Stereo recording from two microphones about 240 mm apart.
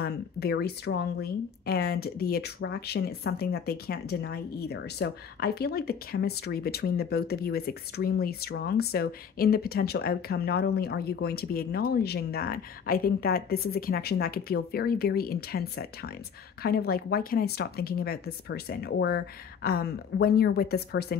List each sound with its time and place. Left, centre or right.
0.0 s speech: left